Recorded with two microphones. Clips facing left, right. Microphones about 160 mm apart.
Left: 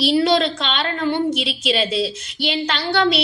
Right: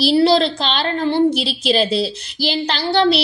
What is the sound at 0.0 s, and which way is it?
A woman's voice, 35° right (ahead or behind).